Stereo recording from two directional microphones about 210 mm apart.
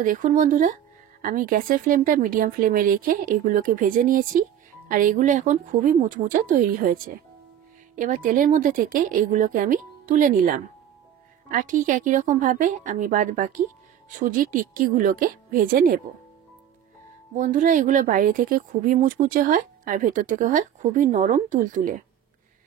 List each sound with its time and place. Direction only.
0.0 s a woman's voice: 40° right (ahead or behind)
17.4 s a woman's voice: 40° right (ahead or behind)